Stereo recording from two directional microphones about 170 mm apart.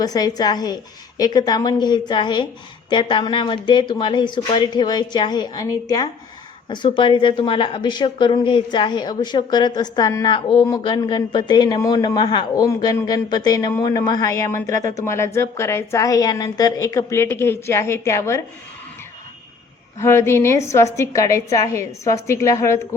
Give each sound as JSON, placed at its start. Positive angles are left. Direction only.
{"t": 0.0, "sound": "a woman's voice", "side_deg": 25}
{"t": 20.0, "sound": "a woman's voice", "side_deg": 15}